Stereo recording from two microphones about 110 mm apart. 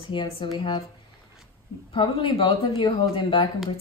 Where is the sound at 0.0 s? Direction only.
50° left (ahead or behind).